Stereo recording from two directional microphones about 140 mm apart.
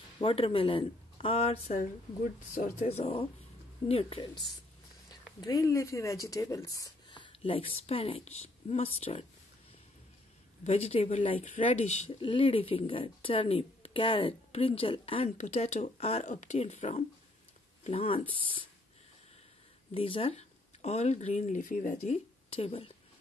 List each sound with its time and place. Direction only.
0.2 s speech: 40° left (ahead or behind)
2.5 s speech: 55° left (ahead or behind); by 4.3 s 40° left (ahead or behind)
5.4 s speech: 25° left (ahead or behind); by 9.2 s 45° left (ahead or behind)
10.6 s speech: 45° left (ahead or behind)
11.7 s speech: 55° left (ahead or behind)
12.1 s speech: 40° left (ahead or behind)
15.3 s speech: 55° left (ahead or behind)
19.9 s speech: 40° left (ahead or behind); by 22.1 s 65° left (ahead or behind)
22.1 s a woman's voice: 45° left (ahead or behind)